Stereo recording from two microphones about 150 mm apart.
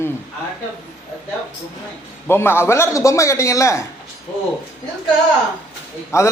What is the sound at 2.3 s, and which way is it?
A man's voice, 15° left (ahead or behind).